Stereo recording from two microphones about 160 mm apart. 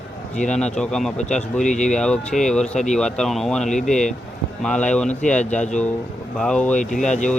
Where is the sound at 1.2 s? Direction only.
45° left (ahead or behind).